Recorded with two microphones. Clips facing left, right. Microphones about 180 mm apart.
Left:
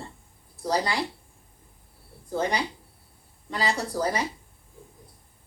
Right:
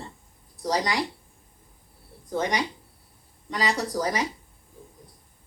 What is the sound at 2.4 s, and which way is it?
Speech, 30° left (ahead or behind).